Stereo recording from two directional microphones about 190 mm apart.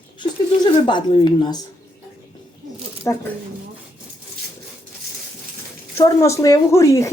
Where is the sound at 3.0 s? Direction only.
15° left (ahead or behind).